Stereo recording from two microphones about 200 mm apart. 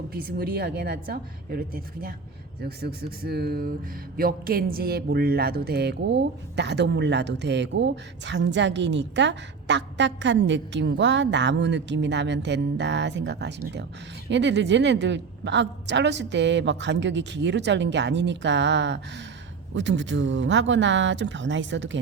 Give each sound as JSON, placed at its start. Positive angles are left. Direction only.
{"t": 0.1, "sound": "a woman's voice", "side_deg": -50}